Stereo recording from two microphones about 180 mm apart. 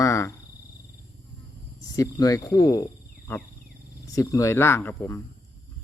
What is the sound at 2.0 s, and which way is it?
Speech, 20° left (ahead or behind).